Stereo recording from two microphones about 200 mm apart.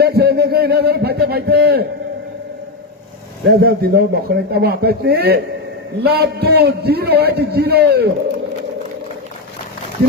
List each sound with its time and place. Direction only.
0.0 s a man's voice: 50° right (ahead or behind)
3.5 s a man's voice: 50° right (ahead or behind)